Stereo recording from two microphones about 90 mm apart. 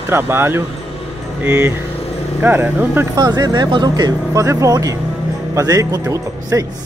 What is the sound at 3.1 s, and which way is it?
Speech, 45° right (ahead or behind).